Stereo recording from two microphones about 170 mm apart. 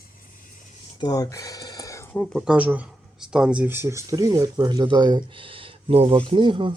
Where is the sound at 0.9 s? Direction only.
20° left (ahead or behind).